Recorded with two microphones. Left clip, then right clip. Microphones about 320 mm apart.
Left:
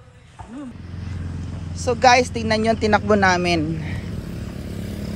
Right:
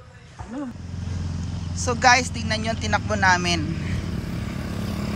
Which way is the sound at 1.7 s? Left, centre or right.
Centre.